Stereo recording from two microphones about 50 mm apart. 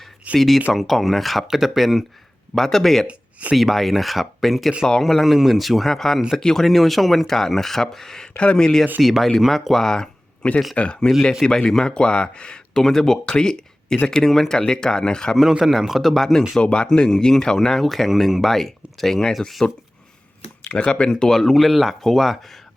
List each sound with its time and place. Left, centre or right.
0.3 s speech: centre
5.2 s speech: centre
9.0 s speech: centre
10.4 s speech: left
12.7 s speech: centre
15.4 s speech: centre
16.6 s speech: centre
20.7 s speech: left
21.1 s speech: centre